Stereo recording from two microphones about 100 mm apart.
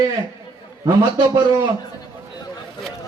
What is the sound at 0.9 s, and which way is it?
Speech, 35° right (ahead or behind).